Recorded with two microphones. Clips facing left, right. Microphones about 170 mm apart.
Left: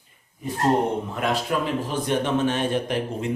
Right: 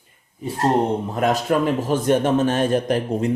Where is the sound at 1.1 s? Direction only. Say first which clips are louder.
Right 5 dB; 45° right (ahead or behind).